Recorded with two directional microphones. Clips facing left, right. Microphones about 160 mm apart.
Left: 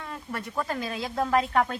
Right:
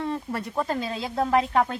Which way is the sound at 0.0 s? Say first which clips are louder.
Right 7 dB; 30° right (ahead or behind).